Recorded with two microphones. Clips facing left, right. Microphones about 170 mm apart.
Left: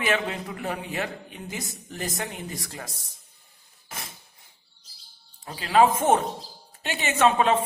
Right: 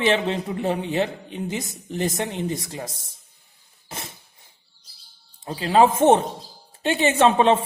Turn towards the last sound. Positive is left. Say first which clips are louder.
# right 4 dB
turn(degrees=-30)  # may be behind; listen again after turning